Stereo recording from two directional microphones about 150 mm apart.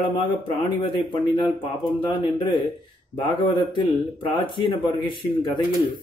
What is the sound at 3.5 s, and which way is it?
Speech, 35° left (ahead or behind).